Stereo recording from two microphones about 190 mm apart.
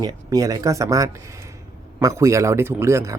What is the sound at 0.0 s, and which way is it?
Speech, 20° right (ahead or behind).